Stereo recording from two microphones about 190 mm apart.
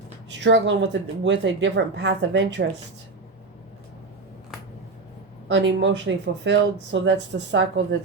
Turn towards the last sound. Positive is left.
turn(degrees=-65)  # may be behind; listen again after turning